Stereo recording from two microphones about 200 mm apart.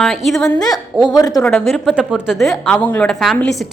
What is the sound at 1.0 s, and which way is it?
Speech, 20° left (ahead or behind).